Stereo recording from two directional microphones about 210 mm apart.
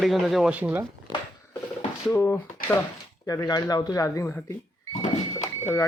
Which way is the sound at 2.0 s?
10° left (ahead or behind).